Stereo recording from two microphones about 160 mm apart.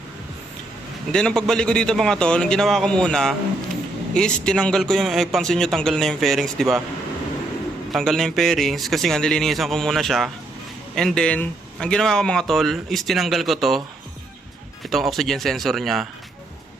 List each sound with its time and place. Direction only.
1.1 s speech: 5° left (ahead or behind)
7.9 s speech: centre (ahead or behind)
14.8 s speech: centre (ahead or behind)